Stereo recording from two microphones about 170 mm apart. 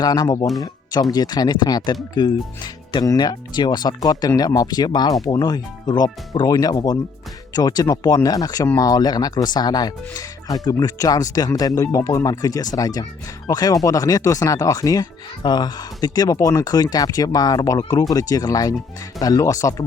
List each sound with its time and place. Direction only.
0.0 s speech: 25° left (ahead or behind)